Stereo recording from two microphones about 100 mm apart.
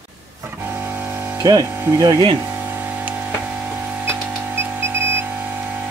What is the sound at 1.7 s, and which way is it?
Speech, 20° right (ahead or behind).